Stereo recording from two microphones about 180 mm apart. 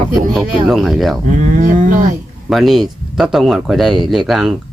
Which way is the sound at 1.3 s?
45° right (ahead or behind).